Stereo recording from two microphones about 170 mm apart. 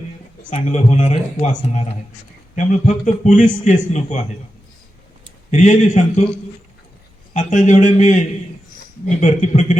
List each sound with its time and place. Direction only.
0.5 s a man's voice: 45° left (ahead or behind)
5.5 s a man's voice: 45° left (ahead or behind)
7.3 s a man's voice: 45° left (ahead or behind)